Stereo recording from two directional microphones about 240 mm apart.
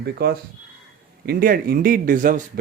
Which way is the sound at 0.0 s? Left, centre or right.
Right.